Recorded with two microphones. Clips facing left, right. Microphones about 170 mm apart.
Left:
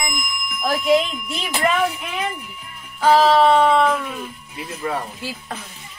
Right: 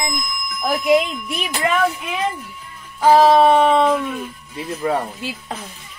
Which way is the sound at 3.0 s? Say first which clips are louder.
Right 2 dB; 15° right (ahead or behind).